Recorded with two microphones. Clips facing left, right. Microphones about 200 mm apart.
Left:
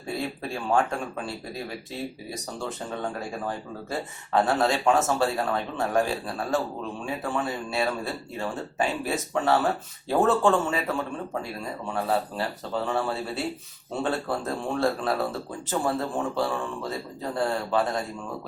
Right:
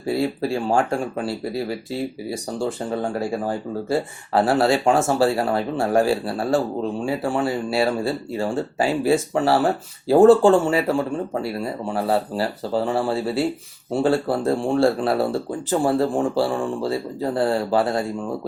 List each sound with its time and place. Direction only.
0.2 s speech: 30° right (ahead or behind)